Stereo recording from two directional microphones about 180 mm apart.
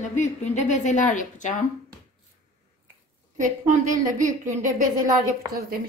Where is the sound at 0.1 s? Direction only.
40° left (ahead or behind).